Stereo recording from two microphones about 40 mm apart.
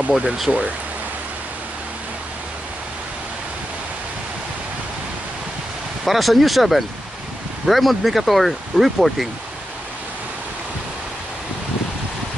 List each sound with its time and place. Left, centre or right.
0.5 s speech: right
6.0 s speech: centre